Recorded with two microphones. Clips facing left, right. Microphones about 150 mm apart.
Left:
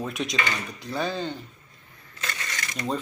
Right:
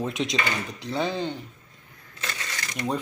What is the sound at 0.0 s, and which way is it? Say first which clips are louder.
Speech: right 2 dB; 25° right (ahead or behind).